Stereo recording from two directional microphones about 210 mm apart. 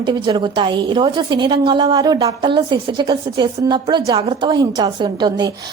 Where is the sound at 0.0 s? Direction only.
20° right (ahead or behind).